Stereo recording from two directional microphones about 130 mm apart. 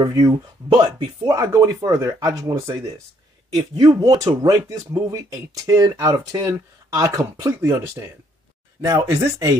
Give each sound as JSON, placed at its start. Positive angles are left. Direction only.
{"t": 0.0, "sound": "speech", "side_deg": -30}